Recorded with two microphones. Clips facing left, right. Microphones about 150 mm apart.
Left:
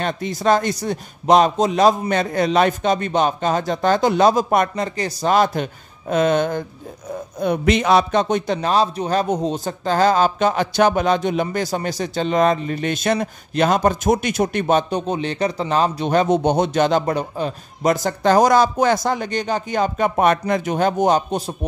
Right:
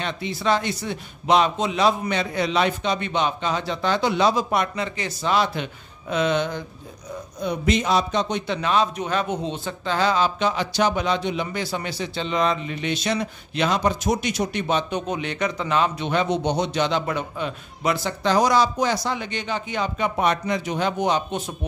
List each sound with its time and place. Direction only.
0.0 s a man's voice: 45° left (ahead or behind)
7.3 s a man's voice: 60° left (ahead or behind)
15.0 s a man's voice: 35° left (ahead or behind)